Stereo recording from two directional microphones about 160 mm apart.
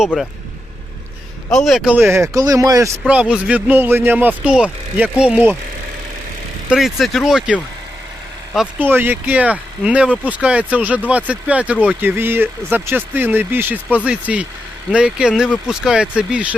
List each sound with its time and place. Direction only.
1.5 s speech: centre (ahead or behind); by 2.9 s 20° right (ahead or behind)
3.1 s speech: 5° right (ahead or behind)
6.7 s speech: centre (ahead or behind)
8.8 s speech: 10° right (ahead or behind)